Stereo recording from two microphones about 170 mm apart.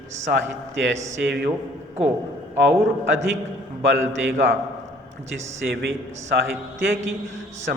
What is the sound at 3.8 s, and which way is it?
Speech, 90° right.